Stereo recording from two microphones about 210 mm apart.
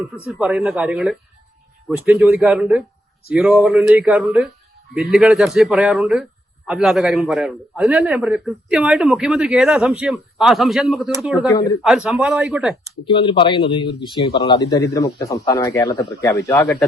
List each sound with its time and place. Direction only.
0.3 s a man's voice: 5° right (ahead or behind)
11.4 s speech: 15° left (ahead or behind)
11.8 s a man's voice: centre (ahead or behind)
13.1 s a man's voice: 25° left (ahead or behind)